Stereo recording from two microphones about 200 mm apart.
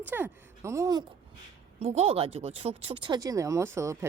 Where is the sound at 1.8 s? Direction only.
30° right (ahead or behind).